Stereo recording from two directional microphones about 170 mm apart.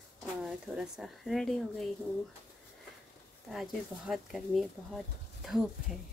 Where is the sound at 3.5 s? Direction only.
Centre (ahead or behind).